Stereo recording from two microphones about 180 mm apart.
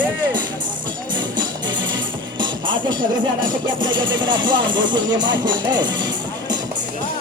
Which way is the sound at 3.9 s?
25° right (ahead or behind).